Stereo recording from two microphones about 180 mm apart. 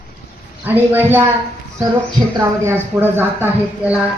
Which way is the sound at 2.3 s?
15° right (ahead or behind).